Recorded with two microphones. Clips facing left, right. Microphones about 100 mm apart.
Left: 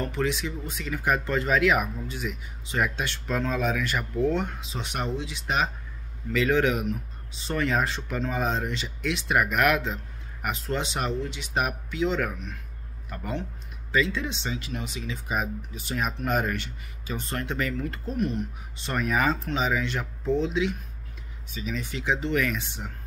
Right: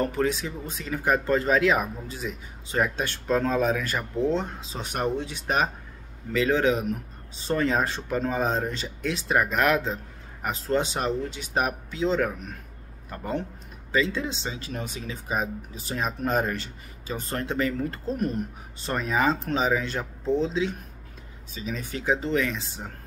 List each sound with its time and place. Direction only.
0.0 s speech: 40° right (ahead or behind)
4.7 s speech: 45° right (ahead or behind)
6.3 s speech: 30° right (ahead or behind)
18.9 s speech: 25° right (ahead or behind)